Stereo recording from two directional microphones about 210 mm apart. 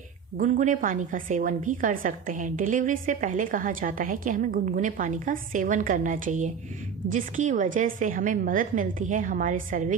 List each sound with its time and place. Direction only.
0.3 s a woman's voice: 40° right (ahead or behind)